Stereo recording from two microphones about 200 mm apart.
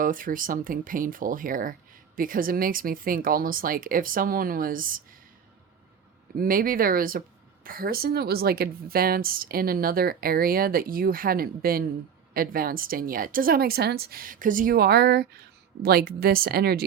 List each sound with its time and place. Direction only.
0.0 s a woman's voice: 45° right (ahead or behind)
6.3 s a woman's voice: 45° right (ahead or behind)